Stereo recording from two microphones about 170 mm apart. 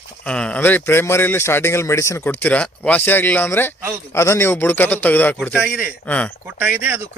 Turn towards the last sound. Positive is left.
turn(degrees=-10)  # may be behind; listen again after turning